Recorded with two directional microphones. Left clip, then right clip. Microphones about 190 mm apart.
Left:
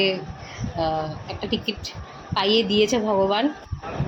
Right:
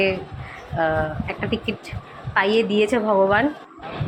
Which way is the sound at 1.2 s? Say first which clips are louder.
Right 2 dB; 35° right (ahead or behind).